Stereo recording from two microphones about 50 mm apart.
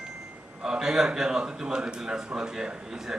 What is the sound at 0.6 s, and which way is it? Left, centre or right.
A man's voice, centre.